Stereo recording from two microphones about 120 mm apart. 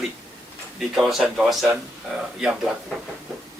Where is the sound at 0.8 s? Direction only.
Centre (ahead or behind).